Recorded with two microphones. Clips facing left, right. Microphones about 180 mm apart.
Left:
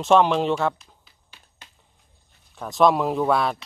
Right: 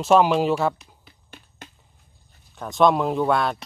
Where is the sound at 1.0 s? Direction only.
55° right (ahead or behind).